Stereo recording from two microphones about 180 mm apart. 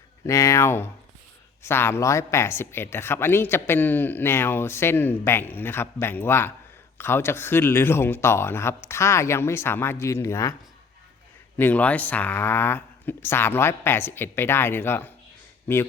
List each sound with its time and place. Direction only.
0.3 s speech: 15° left (ahead or behind)
11.5 s speech: 10° left (ahead or behind)